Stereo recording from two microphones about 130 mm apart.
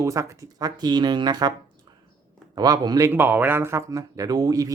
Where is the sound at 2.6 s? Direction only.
30° right (ahead or behind).